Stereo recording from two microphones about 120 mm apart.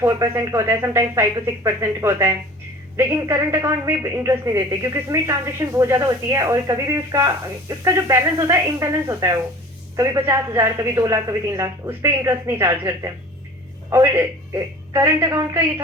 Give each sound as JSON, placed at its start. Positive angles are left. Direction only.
{"t": 0.0, "sound": "speech", "side_deg": -25}